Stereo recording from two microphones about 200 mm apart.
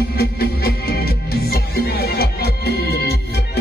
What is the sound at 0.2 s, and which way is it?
Music, 50° left (ahead or behind).